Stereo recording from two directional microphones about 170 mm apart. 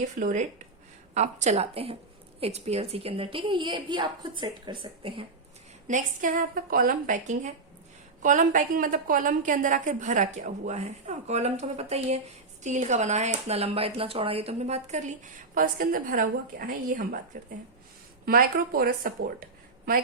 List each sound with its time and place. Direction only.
0.0 s a woman's voice: 50° right (ahead or behind); by 5.2 s 30° right (ahead or behind)
5.9 s speech: 50° right (ahead or behind)
18.3 s a woman's voice: 60° right (ahead or behind)